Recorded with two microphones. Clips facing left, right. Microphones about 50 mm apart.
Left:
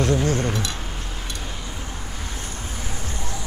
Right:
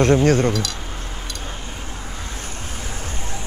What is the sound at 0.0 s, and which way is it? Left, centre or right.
Speech, right.